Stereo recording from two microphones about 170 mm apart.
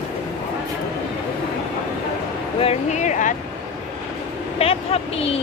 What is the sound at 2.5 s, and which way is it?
Speech, 40° left (ahead or behind).